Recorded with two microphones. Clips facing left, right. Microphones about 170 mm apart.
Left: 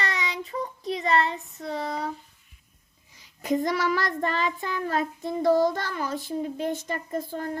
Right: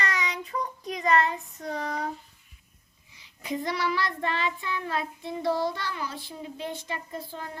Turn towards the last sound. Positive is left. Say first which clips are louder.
# left 7 dB
turn(degrees=50)  # may be behind; listen again after turning